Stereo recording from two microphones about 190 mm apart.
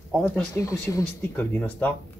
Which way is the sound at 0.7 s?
10° left (ahead or behind).